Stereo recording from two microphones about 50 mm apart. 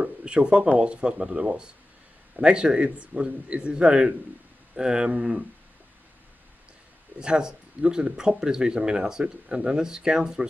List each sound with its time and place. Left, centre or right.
0.0 s a man's voice: right
7.2 s speech: centre